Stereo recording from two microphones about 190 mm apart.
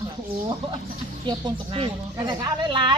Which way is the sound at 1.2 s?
25° right (ahead or behind).